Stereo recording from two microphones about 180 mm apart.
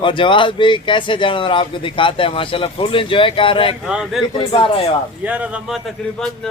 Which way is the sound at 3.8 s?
5° right (ahead or behind).